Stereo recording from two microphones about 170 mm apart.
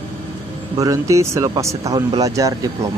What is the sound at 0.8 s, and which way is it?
Speech, 20° right (ahead or behind).